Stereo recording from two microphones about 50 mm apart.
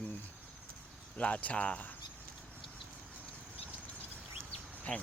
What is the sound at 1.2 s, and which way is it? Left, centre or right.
Speech, left.